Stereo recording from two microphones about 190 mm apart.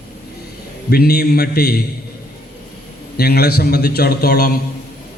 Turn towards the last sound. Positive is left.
turn(degrees=55)  # may be behind; listen again after turning